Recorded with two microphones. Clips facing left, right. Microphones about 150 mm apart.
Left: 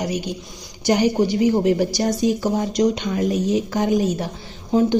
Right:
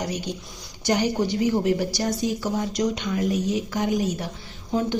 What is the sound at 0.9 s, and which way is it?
Speech, 15° left (ahead or behind).